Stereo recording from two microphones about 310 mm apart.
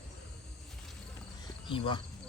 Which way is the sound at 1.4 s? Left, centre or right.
Centre.